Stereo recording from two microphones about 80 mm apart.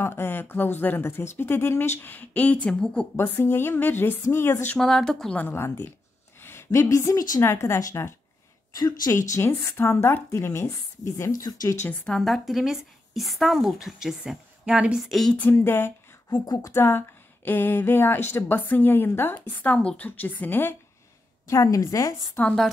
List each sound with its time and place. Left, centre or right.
0.0 s speech: left; by 3.1 s centre
3.2 s speech: left
4.7 s speech: centre
5.5 s speech: left
6.4 s a sound: left
7.0 s a woman's voice: left
8.7 s a woman's voice: left
9.1 s speech: left
12.1 s speech: centre
15.0 s speech: centre
15.5 s speech: left
21.5 s a woman's voice: left
22.4 s speech: left